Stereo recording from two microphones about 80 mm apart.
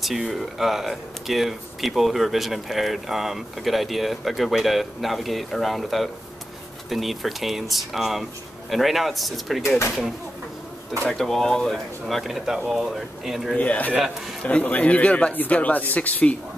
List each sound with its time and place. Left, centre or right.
0.0 s speech: centre
11.1 s speech: centre
13.6 s speech: centre